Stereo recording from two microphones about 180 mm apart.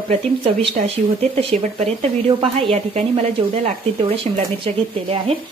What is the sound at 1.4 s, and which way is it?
Speech, 35° right (ahead or behind).